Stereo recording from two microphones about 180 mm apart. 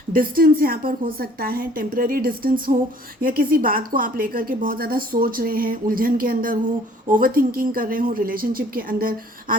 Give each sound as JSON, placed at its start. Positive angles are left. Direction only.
{"t": 0.1, "sound": "a woman's voice", "side_deg": -50}